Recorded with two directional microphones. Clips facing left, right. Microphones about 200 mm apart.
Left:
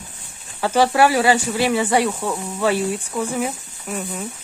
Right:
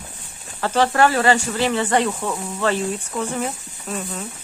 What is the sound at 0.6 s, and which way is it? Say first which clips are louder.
Speech: left 2 dB; 10° left (ahead or behind).